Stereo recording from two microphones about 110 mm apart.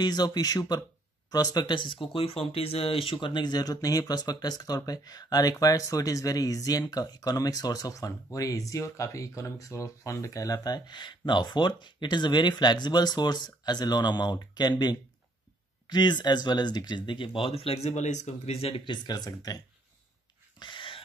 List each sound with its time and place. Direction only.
0.0 s speech: 40° left (ahead or behind); by 18.8 s 70° left (ahead or behind)
18.9 s speech: 40° left (ahead or behind)
20.5 s a sound: 45° left (ahead or behind)